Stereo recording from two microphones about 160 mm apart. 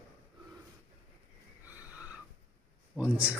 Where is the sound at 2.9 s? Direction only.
10° right (ahead or behind).